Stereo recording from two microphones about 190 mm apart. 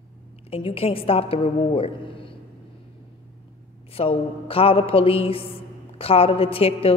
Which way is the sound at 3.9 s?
30° left (ahead or behind).